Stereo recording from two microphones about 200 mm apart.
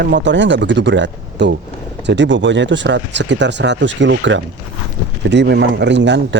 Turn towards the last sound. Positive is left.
turn(degrees=-65)  # may be behind; listen again after turning